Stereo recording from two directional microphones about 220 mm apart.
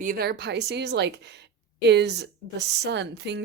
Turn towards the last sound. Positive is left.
turn(degrees=-50)  # may be behind; listen again after turning